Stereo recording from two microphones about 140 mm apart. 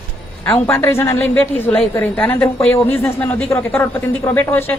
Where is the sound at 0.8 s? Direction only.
20° left (ahead or behind).